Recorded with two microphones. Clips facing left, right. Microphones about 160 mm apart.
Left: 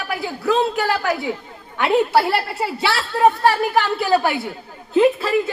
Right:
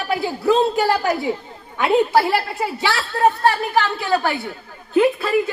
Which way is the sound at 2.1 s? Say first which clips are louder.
Even; centre (ahead or behind).